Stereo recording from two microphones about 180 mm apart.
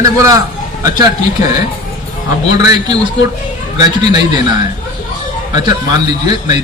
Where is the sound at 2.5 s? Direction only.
20° right (ahead or behind).